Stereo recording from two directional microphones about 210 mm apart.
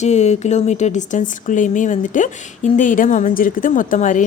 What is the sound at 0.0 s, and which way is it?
A woman's voice, 35° left (ahead or behind).